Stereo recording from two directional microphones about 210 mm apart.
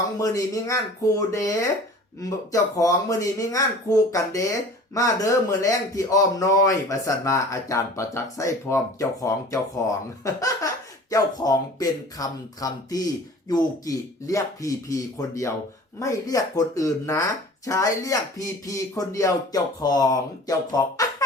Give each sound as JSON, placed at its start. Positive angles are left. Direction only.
{"t": 0.2, "sound": "speech", "side_deg": 15}